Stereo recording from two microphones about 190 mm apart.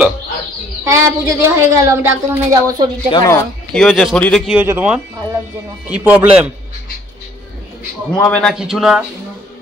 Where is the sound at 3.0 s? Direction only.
25° left (ahead or behind).